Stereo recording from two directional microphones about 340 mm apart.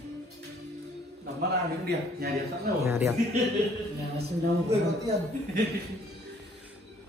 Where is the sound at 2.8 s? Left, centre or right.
Centre.